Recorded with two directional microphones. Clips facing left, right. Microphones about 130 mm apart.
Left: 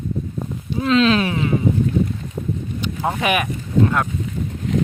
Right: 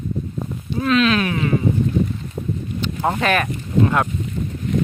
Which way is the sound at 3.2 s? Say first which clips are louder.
Even; 10° left (ahead or behind).